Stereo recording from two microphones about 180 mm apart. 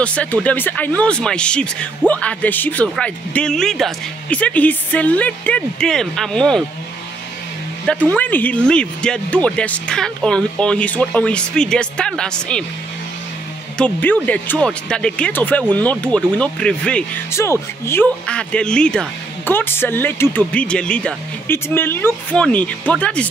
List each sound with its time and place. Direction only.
0.0 s speech: 5° left (ahead or behind)
8.1 s speech: 10° left (ahead or behind)
13.7 s speech: 10° left (ahead or behind)